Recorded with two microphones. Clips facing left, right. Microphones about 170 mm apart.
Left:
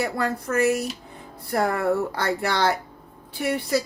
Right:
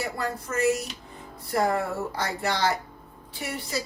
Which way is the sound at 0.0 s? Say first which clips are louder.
Left 5 dB; 60° left (ahead or behind).